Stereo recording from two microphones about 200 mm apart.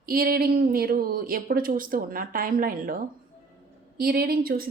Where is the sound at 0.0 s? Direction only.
45° right (ahead or behind).